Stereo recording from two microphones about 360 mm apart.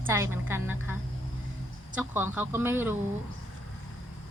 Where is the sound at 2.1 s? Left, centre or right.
Centre.